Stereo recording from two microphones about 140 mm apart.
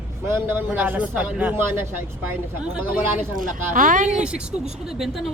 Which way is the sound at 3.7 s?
70° right (ahead or behind).